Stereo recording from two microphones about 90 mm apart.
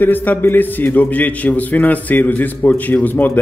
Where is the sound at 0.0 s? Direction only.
20° left (ahead or behind).